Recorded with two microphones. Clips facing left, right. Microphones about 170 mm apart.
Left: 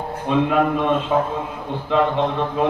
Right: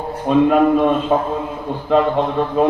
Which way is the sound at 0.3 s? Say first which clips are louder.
Right 6 dB; 45° right (ahead or behind).